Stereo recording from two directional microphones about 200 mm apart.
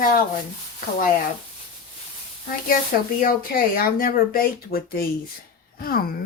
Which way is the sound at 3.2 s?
45° left (ahead or behind).